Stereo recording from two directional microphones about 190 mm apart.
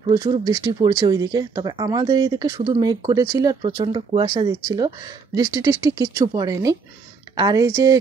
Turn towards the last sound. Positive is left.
turn(degrees=-20)  # may be behind; listen again after turning